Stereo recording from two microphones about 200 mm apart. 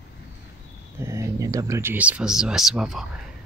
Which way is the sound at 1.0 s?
15° right (ahead or behind).